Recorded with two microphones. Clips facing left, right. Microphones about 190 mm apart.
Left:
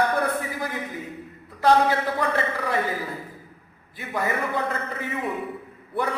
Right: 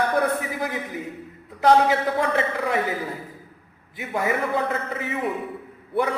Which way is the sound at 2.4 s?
20° right (ahead or behind).